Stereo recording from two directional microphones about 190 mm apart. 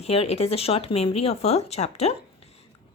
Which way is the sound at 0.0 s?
30° left (ahead or behind).